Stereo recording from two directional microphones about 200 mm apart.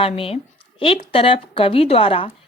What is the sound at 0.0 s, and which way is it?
Speech, 30° left (ahead or behind).